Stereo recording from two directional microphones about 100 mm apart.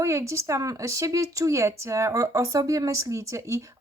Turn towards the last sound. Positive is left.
turn(degrees=-30)  # may be behind; listen again after turning